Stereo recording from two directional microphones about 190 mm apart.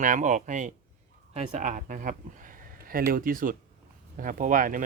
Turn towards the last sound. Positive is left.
turn(degrees=-45)  # may be behind; listen again after turning